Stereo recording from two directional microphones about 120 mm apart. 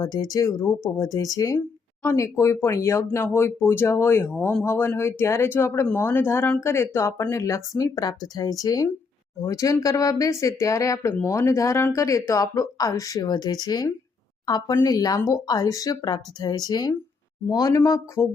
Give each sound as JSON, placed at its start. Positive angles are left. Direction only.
{"t": 0.0, "sound": "speech", "side_deg": 30}